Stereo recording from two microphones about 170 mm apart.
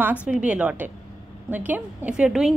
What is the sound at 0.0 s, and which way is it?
A woman's voice, 10° right (ahead or behind).